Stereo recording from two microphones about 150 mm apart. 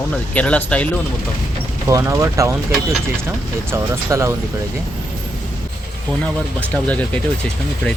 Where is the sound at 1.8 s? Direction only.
20° right (ahead or behind).